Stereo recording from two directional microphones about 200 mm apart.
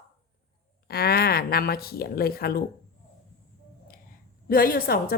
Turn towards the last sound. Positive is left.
turn(degrees=50)  # may be behind; listen again after turning